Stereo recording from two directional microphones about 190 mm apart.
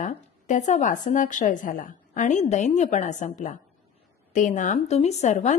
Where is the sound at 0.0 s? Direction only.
40° left (ahead or behind).